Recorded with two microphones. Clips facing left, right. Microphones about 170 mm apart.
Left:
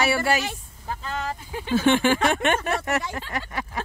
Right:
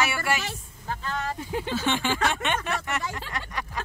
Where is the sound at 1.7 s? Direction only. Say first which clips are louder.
Left 9 dB; 55° left (ahead or behind).